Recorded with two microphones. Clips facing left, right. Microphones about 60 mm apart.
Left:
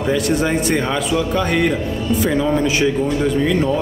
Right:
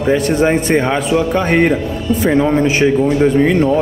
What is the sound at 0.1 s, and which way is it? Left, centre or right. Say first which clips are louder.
A man's voice: right 5 dB; right.